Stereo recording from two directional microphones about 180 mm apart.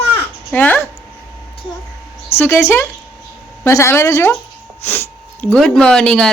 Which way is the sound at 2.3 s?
10° left (ahead or behind).